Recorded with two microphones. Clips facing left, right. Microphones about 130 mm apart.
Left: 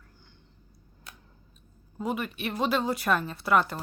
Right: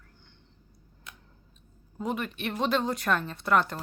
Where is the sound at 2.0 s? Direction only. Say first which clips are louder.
Left 1 dB; 5° left (ahead or behind).